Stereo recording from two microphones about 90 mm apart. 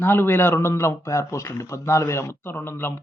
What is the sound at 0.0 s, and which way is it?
Speech, 25° left (ahead or behind).